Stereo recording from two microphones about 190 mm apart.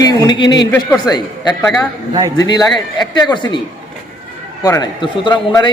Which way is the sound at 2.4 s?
20° left (ahead or behind).